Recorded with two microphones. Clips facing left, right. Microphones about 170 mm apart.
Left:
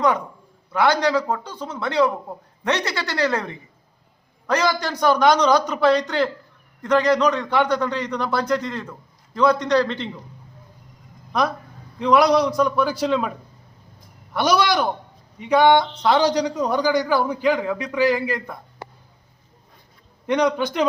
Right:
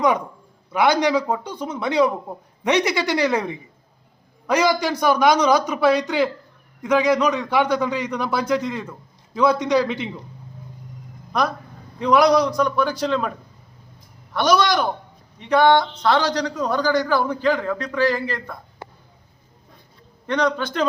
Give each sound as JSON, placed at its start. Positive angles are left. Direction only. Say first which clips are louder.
{"t": 0.7, "sound": "a man's voice", "louder": "right 1 dB", "side_deg": -15}
{"t": 11.3, "sound": "a man's voice", "louder": "even", "side_deg": 0}
{"t": 14.3, "sound": "a man's voice", "louder": "right 1 dB", "side_deg": 10}
{"t": 20.2, "sound": "a man's voice", "louder": "left 2 dB", "side_deg": 15}